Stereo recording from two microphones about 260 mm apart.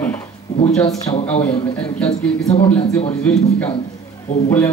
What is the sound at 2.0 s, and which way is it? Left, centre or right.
Speech, centre.